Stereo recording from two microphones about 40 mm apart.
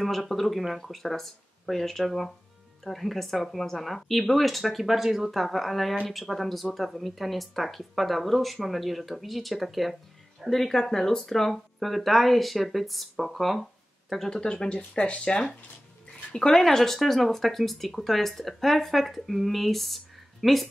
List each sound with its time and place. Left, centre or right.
0.0 s speech: centre
5.4 s speech: centre
14.1 s speech: centre
16.3 s speech: centre